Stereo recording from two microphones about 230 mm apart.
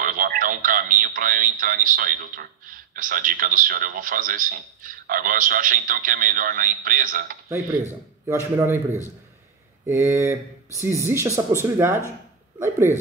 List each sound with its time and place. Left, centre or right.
0.0 s speech: right
8.3 s speech: centre